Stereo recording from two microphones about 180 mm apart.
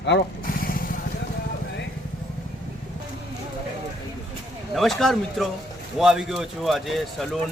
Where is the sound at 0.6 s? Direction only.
50° left (ahead or behind).